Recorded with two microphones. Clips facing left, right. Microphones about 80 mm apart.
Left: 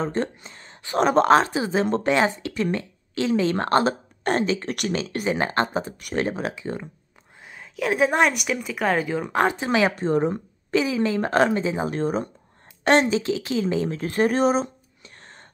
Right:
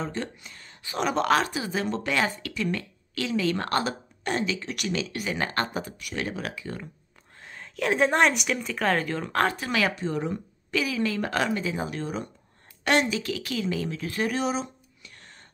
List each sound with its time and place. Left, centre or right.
0.0 s speech: left
0.8 s a woman's voice: left
2.1 s a woman's voice: left
4.2 s a woman's voice: left
4.9 s a woman's voice: left
5.9 s a woman's voice: left
6.2 s a woman's voice: left
7.4 s a woman's voice: centre; by 9.9 s left
9.9 s speech: left
10.8 s a woman's voice: left
12.0 s speech: left